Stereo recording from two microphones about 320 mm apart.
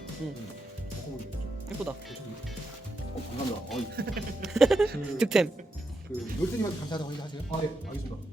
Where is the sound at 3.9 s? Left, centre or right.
Right.